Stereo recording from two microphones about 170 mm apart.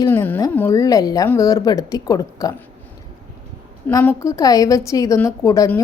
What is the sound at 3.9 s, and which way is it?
A woman's voice, 20° left (ahead or behind).